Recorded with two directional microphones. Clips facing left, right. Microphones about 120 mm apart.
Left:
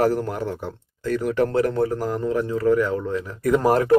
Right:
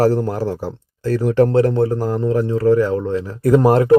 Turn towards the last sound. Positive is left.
turn(degrees=-25)  # may be behind; listen again after turning